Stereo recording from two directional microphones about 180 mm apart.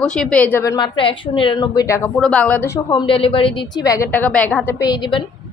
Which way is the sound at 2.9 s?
30° left (ahead or behind).